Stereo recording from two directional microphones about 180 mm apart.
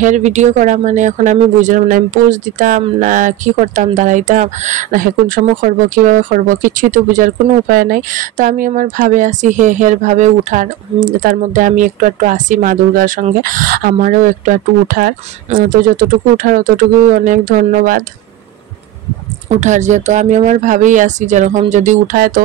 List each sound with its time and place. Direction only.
0.0 s speech: 40° right (ahead or behind)
19.5 s speech: 40° right (ahead or behind)